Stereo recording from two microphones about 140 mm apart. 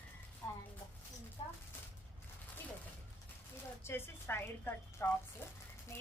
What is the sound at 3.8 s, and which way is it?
A woman's voice, 15° left (ahead or behind).